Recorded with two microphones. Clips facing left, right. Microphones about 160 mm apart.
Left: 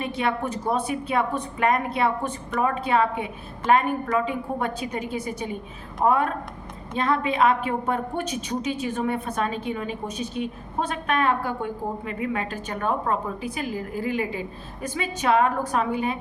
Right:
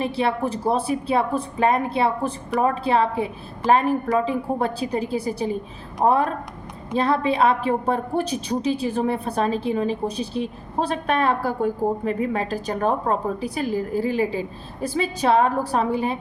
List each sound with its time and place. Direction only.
0.0 s a woman's voice: 30° right (ahead or behind)